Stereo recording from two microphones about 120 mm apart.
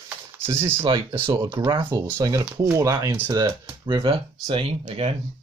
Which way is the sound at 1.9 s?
15° right (ahead or behind).